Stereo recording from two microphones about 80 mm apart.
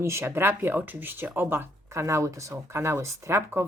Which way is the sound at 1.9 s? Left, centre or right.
Right.